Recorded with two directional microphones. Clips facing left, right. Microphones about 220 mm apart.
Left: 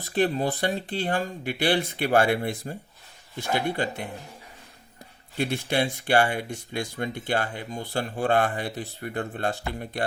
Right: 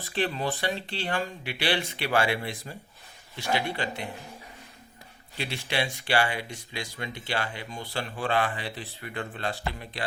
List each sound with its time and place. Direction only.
0.0 s speech: 45° left (ahead or behind)
5.4 s speech: 50° left (ahead or behind)